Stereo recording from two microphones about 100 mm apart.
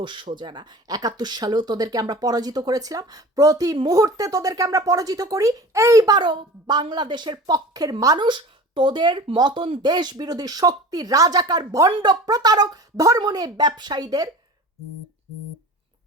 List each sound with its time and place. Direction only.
0.0 s a woman's voice: 55° right (ahead or behind); by 14.3 s 40° right (ahead or behind)